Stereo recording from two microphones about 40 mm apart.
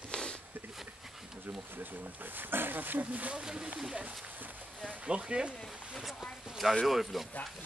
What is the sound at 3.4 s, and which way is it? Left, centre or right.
Speech, centre.